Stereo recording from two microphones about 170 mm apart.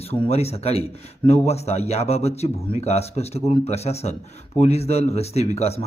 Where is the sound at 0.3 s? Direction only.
35° left (ahead or behind).